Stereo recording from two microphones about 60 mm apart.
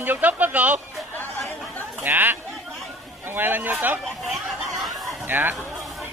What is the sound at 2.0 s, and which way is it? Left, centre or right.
Speech, right.